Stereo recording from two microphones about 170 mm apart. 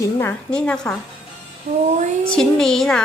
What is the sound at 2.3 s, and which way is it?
Speech, 5° left (ahead or behind).